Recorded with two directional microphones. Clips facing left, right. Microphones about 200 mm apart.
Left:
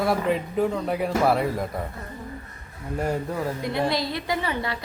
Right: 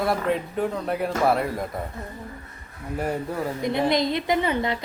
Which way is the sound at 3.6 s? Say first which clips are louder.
Right 6 dB; 20° right (ahead or behind).